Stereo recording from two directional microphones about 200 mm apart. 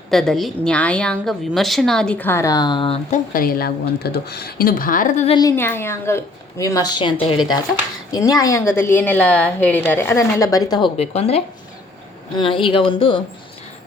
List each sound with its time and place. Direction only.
0.1 s a woman's voice: centre (ahead or behind); by 3.2 s 25° left (ahead or behind)
3.3 s speech: 50° left (ahead or behind)
5.4 s a woman's voice: 15° left (ahead or behind)